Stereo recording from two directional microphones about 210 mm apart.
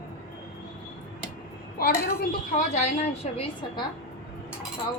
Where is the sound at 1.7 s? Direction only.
45° left (ahead or behind).